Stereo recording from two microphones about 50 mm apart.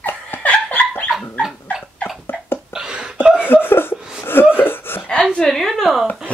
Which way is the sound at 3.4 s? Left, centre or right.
Left.